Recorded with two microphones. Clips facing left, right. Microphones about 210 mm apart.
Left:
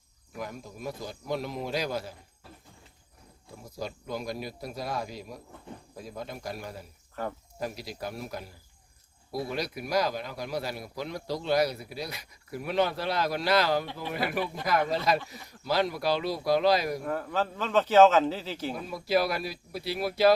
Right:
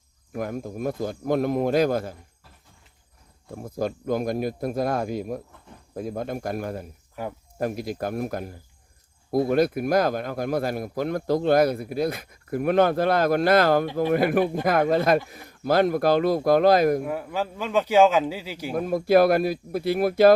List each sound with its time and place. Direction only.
0.3 s speech: 50° right (ahead or behind)
3.5 s speech: 50° right (ahead or behind)
7.2 s a man's voice: 10° right (ahead or behind)
7.6 s speech: 50° right (ahead or behind)
17.0 s a man's voice: 10° right (ahead or behind)
18.7 s speech: 50° right (ahead or behind)